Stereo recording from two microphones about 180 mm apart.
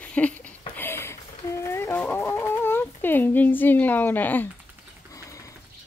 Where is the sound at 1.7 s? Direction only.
15° left (ahead or behind).